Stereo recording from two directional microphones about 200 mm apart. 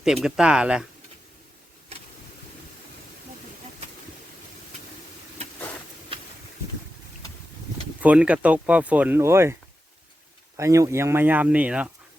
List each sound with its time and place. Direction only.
0.0 s speech: 5° right (ahead or behind)
8.0 s speech: 5° right (ahead or behind)
10.6 s speech: 15° right (ahead or behind)